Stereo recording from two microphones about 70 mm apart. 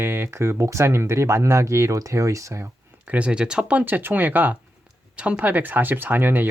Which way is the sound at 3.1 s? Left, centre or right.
Centre.